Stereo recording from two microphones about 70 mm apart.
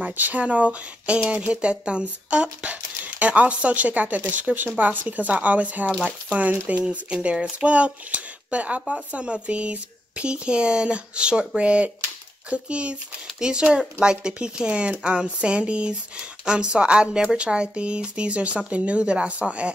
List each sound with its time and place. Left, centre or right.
0.0 s speech: right